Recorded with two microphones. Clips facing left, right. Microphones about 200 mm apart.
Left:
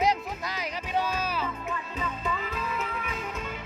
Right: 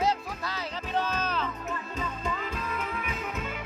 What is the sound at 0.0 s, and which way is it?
Music, 15° left (ahead or behind).